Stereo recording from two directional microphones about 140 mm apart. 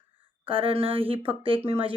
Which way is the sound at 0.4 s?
40° right (ahead or behind).